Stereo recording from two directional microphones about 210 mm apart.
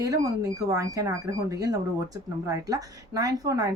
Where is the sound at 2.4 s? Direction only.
15° right (ahead or behind).